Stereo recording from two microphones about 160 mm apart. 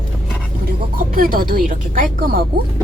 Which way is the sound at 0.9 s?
60° right (ahead or behind).